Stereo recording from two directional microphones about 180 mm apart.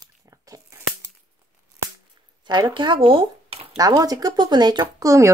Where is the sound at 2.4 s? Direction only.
25° right (ahead or behind).